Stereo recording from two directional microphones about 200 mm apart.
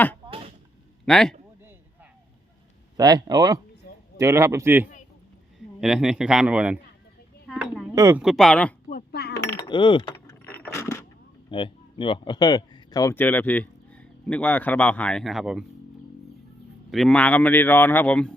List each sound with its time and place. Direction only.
0.3 s a sound: 30° right (ahead or behind)
1.0 s a man's voice: 5° left (ahead or behind)
3.0 s a man's voice: 20° right (ahead or behind)
7.4 s dishes: centre (ahead or behind)
7.9 s a man's voice: 10° right (ahead or behind); by 8.7 s 5° left (ahead or behind)
8.9 s chink: 50° left (ahead or behind)
9.5 s chink: 20° left (ahead or behind)
10.4 s a sound: 10° left (ahead or behind)
11.5 s speech: 25° left (ahead or behind); by 15.6 s centre (ahead or behind)
16.9 s a man's voice: 5° left (ahead or behind)